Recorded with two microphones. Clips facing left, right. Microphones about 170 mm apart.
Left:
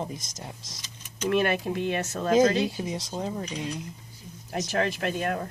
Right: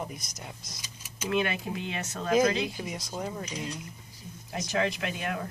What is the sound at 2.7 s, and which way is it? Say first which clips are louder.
A woman's voice: left 4 dB; 25° left (ahead or behind).